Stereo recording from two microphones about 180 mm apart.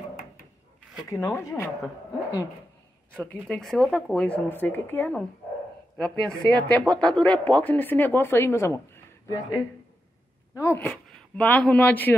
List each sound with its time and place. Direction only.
0.1 s drawer open or close: 50° left (ahead or behind)
1.1 s speech: 15° left (ahead or behind)
3.4 s a woman's voice: centre (ahead or behind)